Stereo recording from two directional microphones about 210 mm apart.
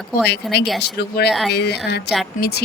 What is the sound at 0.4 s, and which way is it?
Speech, centre (ahead or behind).